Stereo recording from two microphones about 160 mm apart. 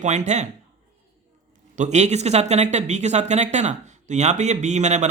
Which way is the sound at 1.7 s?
45° right (ahead or behind).